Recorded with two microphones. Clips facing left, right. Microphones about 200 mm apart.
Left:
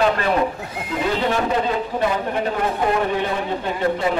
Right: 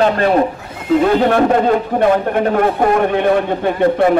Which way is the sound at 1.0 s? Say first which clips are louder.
Right 7 dB; 55° right (ahead or behind).